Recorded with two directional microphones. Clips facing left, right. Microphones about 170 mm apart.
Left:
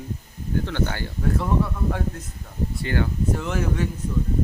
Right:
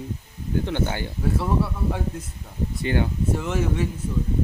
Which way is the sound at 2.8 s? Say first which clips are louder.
Right 2 dB; 20° right (ahead or behind).